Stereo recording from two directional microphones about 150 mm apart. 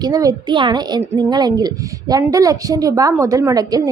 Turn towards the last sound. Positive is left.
turn(degrees=-25)  # may be behind; listen again after turning